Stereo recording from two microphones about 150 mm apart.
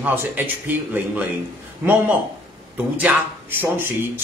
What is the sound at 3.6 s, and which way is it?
Speech, 15° right (ahead or behind).